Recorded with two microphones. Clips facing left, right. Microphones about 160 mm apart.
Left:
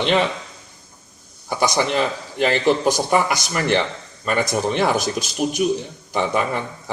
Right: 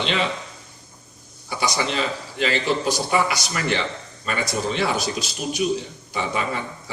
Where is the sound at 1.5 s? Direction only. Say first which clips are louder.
Left 5 dB; 50° left (ahead or behind).